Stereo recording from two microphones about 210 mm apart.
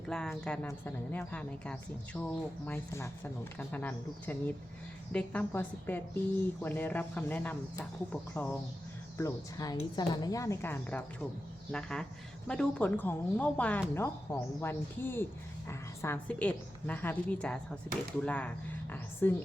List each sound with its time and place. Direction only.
0.1 s a woman's voice: 5° left (ahead or behind)